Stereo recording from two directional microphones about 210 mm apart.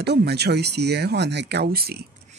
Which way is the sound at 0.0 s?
50° right (ahead or behind).